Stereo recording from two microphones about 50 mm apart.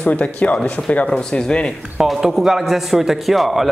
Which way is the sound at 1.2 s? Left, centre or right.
Centre.